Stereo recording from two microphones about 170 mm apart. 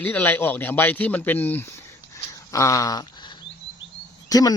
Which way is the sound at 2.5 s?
20° left (ahead or behind).